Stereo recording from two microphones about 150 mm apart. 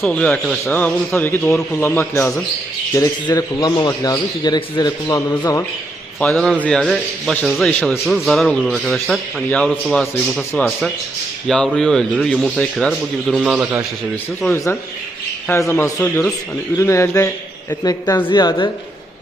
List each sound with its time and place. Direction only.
0.0 s a man's voice: 5° left (ahead or behind); by 5.4 s 20° left (ahead or behind)
6.1 s a man's voice: 5° left (ahead or behind)
7.7 s a man's voice: 10° left (ahead or behind)
8.0 s a man's voice: centre (ahead or behind)
14.5 s a man's voice: 15° left (ahead or behind)